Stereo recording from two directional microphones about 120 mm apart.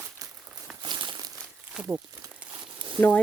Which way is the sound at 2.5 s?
40° right (ahead or behind).